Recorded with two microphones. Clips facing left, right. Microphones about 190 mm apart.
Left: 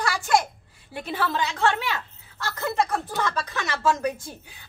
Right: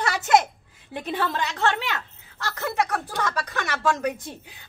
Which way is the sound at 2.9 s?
Centre (ahead or behind).